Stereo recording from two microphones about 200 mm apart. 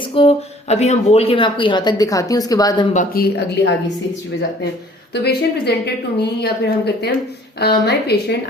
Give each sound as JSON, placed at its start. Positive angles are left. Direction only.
{"t": 0.0, "sound": "speech", "side_deg": 25}
{"t": 2.9, "sound": "a woman's voice", "side_deg": 45}
{"t": 5.1, "sound": "a woman's voice", "side_deg": 55}